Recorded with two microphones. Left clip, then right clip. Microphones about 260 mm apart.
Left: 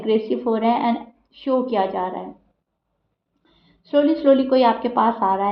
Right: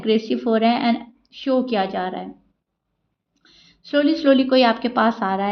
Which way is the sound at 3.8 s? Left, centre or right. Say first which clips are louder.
Left 1 dB; right.